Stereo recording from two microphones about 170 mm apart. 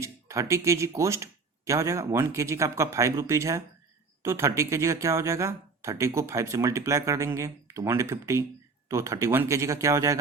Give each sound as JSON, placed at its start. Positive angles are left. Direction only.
{"t": 0.0, "sound": "speech", "side_deg": -15}